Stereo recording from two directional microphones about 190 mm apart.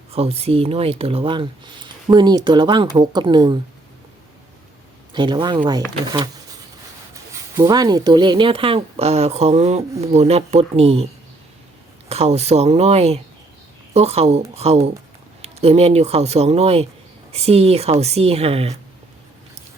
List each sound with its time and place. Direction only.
0.1 s speech: 30° right (ahead or behind)
5.1 s speech: 25° right (ahead or behind)
7.5 s speech: 20° right (ahead or behind)